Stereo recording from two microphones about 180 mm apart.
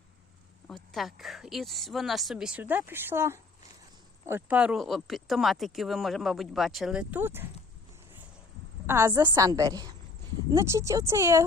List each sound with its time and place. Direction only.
0.7 s speech: centre (ahead or behind)
8.9 s a woman's voice: 15° right (ahead or behind)